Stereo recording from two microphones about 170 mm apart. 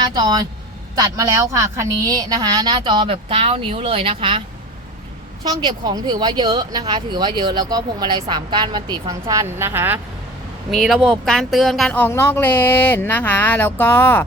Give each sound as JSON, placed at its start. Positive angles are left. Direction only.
{"t": 0.0, "sound": "speech", "side_deg": -25}
{"t": 10.7, "sound": "speech", "side_deg": 0}